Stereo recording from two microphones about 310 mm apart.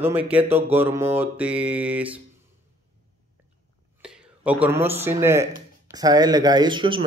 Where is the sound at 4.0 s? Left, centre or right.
Centre.